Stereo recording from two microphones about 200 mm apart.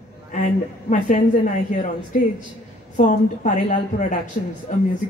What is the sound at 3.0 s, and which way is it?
A woman's voice, 40° left (ahead or behind).